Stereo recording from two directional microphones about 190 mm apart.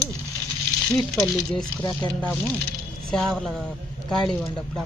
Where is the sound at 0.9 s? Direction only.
Centre (ahead or behind).